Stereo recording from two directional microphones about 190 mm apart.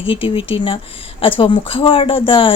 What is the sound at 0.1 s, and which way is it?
Speech, 30° left (ahead or behind).